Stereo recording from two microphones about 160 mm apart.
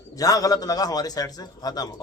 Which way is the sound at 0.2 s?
20° left (ahead or behind).